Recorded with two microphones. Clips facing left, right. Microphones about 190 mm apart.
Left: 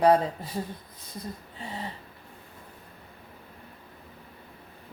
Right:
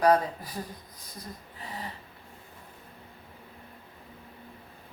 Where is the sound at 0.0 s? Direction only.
25° left (ahead or behind).